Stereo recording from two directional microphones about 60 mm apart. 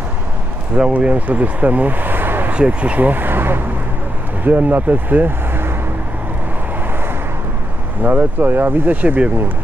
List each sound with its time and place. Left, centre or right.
0.9 s speech: right
2.5 s speech: right
8.0 s speech: right